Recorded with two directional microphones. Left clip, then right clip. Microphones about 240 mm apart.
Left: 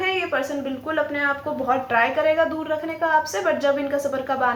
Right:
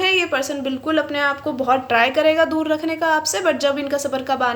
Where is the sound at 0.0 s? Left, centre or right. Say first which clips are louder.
Right 5 dB; right.